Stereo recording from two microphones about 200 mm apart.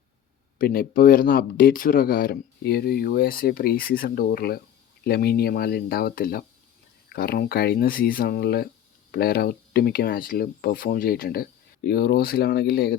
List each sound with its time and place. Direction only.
0.6 s speech: 50° left (ahead or behind)